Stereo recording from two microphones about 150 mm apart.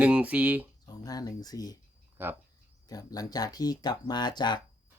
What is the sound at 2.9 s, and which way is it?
Speech, 25° left (ahead or behind).